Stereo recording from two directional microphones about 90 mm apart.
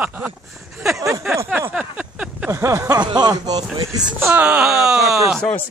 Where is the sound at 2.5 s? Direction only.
35° right (ahead or behind).